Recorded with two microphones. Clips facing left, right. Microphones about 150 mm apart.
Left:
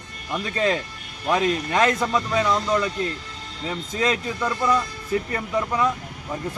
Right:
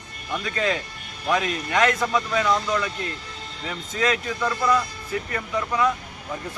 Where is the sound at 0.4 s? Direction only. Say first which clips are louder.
Left 3 dB; 30° left (ahead or behind).